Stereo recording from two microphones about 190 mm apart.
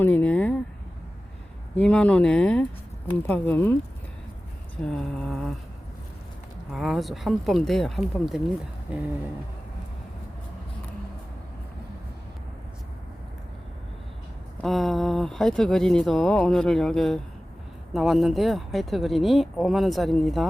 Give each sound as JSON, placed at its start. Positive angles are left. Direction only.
{"t": 0.0, "sound": "a sound", "side_deg": 10}
{"t": 1.7, "sound": "speech", "side_deg": 5}
{"t": 4.8, "sound": "speech", "side_deg": 5}
{"t": 6.7, "sound": "speech", "side_deg": 0}
{"t": 14.6, "sound": "speech", "side_deg": 0}